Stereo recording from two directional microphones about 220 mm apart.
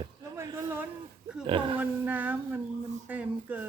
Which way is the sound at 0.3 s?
10° right (ahead or behind).